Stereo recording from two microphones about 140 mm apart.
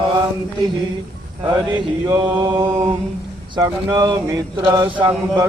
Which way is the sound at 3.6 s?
25° right (ahead or behind).